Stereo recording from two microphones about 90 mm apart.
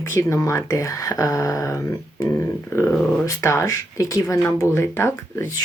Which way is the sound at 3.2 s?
35° left (ahead or behind).